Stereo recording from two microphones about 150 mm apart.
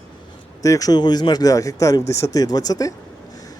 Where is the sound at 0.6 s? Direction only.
25° left (ahead or behind).